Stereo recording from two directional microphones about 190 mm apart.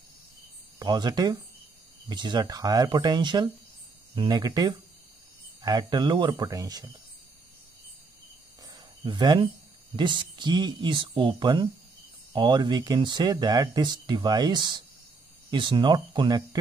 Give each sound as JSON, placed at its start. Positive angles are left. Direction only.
{"t": 0.7, "sound": "speech", "side_deg": -25}
{"t": 8.6, "sound": "a sound", "side_deg": -20}
{"t": 9.9, "sound": "speech", "side_deg": -25}